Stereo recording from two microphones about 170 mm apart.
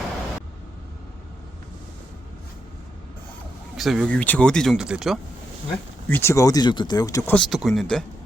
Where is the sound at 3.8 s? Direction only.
Centre (ahead or behind).